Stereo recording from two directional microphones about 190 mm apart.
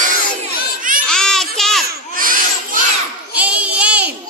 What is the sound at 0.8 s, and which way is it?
Babbling, 45° right (ahead or behind).